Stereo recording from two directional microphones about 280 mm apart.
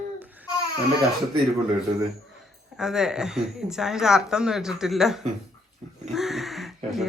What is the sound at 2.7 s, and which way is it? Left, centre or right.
Speech, centre.